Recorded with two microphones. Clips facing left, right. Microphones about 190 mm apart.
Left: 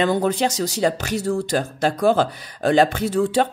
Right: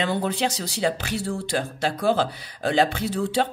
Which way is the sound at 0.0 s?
45° left (ahead or behind).